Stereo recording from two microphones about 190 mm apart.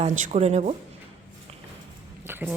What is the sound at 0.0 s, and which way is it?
Speech, 35° right (ahead or behind).